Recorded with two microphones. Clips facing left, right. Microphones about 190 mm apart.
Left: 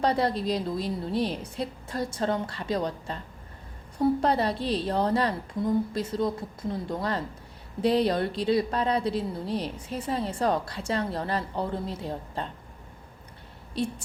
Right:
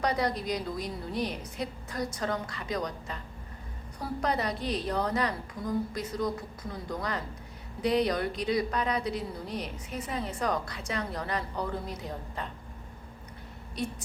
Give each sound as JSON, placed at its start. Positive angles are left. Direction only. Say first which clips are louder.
{"t": 0.0, "sound": "a woman's voice", "louder": "left 4 dB", "side_deg": 30}